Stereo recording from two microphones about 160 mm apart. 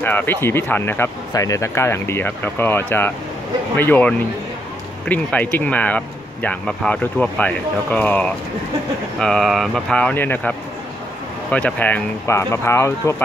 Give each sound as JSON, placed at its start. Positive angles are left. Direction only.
{"t": 0.0, "sound": "speech", "side_deg": 10}
{"t": 11.5, "sound": "speech", "side_deg": 10}